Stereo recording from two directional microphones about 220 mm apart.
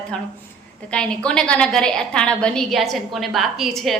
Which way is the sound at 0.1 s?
Centre (ahead or behind).